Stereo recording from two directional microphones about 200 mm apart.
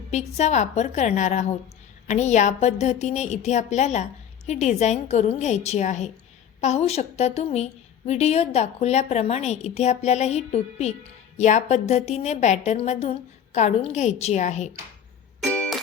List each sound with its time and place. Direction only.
0.1 s a woman's voice: 35° left (ahead or behind)
15.4 s music: 5° left (ahead or behind)